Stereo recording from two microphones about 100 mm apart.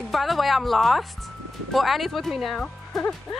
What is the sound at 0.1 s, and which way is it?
Speech, centre (ahead or behind).